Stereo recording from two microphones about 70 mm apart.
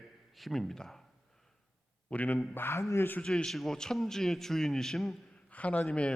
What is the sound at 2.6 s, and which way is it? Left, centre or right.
Speech, left.